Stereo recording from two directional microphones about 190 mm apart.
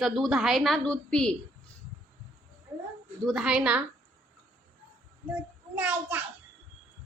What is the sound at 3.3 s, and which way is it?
Speech, 5° right (ahead or behind).